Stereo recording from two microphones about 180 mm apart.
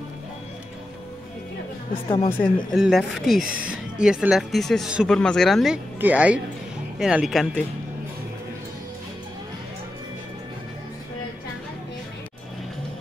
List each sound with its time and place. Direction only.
2.0 s speech: 35° left (ahead or behind)
2.4 s speech: centre (ahead or behind)